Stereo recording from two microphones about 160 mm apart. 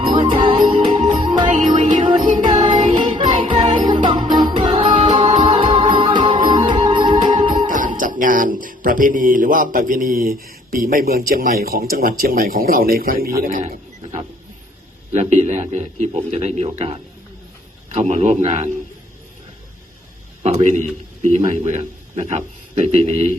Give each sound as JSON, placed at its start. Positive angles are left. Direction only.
{"t": 0.1, "sound": "music", "side_deg": -30}
{"t": 7.9, "sound": "a man's voice", "side_deg": -55}
{"t": 18.1, "sound": "a man's voice", "side_deg": -45}
{"t": 20.4, "sound": "a man's voice", "side_deg": -45}